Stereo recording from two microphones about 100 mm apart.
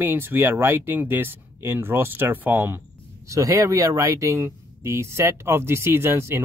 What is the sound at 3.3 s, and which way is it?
Speech, 30° right (ahead or behind).